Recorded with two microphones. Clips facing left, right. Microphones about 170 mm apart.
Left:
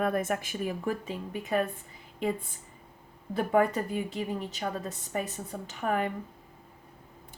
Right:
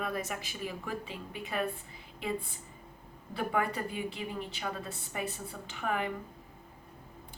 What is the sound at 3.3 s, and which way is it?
A woman's voice, 45° left (ahead or behind).